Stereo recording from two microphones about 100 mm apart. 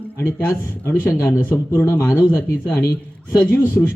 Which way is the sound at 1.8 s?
25° left (ahead or behind).